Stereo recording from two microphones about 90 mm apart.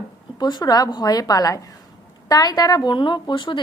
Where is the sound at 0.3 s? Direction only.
50° left (ahead or behind).